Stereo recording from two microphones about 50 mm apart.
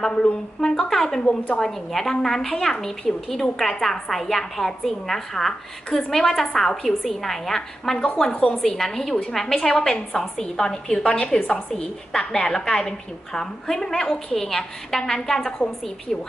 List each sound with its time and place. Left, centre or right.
0.0 s a woman's voice: centre
1.2 s a woman's voice: left
1.6 s a woman's voice: centre